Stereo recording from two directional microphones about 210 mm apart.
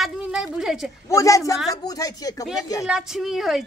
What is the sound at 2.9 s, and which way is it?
Speech, centre (ahead or behind).